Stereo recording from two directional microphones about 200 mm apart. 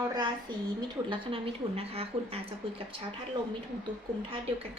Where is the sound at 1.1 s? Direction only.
30° right (ahead or behind).